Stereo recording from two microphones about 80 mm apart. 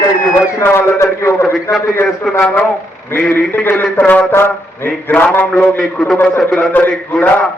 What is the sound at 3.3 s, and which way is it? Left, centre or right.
A man's voice, left.